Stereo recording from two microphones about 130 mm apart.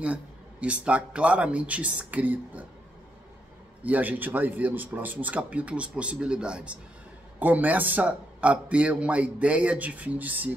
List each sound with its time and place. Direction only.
0.0 s speech: 10° right (ahead or behind)
3.8 s speech: 10° right (ahead or behind)